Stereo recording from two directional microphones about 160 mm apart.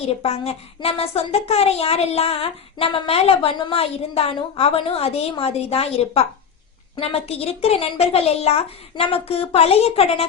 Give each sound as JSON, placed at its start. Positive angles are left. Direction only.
{"t": 0.0, "sound": "a woman's voice", "side_deg": 40}